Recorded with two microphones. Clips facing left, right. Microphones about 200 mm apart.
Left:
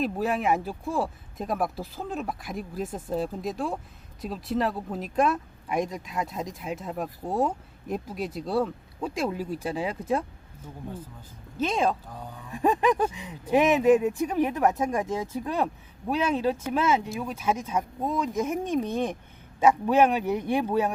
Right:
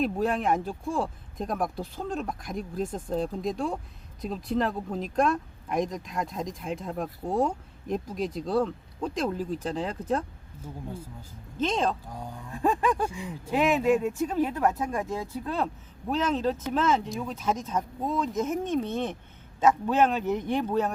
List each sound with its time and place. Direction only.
0.0 s speech: 5° left (ahead or behind)
11.5 s speech: 10° left (ahead or behind)
12.0 s speech: 10° right (ahead or behind)
12.5 s a sound: 15° left (ahead or behind)
13.5 s speech: 20° left (ahead or behind)